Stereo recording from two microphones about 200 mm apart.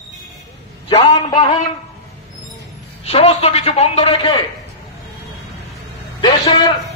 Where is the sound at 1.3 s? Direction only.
20° left (ahead or behind).